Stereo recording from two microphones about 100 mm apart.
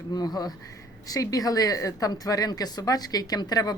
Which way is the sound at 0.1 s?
40° left (ahead or behind).